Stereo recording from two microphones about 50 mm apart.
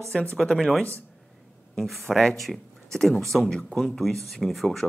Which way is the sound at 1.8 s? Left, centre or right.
Centre.